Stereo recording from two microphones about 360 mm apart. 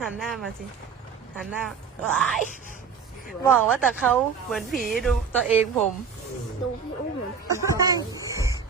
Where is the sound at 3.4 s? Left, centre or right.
Centre.